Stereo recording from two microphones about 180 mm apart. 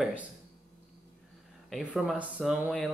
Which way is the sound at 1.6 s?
Centre (ahead or behind).